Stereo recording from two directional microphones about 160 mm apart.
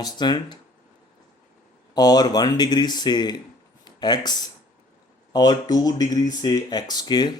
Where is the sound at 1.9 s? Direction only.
25° left (ahead or behind).